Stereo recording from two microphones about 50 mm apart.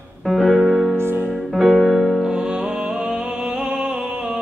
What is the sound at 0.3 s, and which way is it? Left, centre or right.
Music, centre.